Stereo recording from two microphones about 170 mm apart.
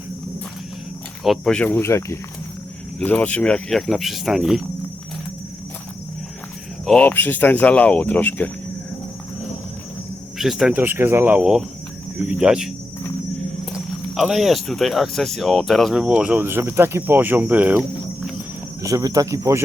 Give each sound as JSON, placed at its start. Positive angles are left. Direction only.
{"t": 1.2, "sound": "speech", "side_deg": 5}
{"t": 6.8, "sound": "speech", "side_deg": 5}
{"t": 10.3, "sound": "speech", "side_deg": 0}
{"t": 13.7, "sound": "speech", "side_deg": 0}
{"t": 18.8, "sound": "speech", "side_deg": -20}